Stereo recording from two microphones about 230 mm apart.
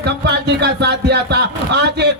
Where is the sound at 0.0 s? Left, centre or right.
Right.